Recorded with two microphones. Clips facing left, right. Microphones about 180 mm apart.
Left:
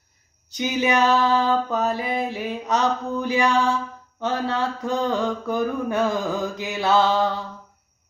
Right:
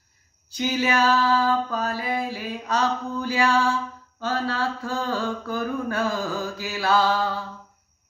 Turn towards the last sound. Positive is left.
turn(degrees=20)  # may be behind; listen again after turning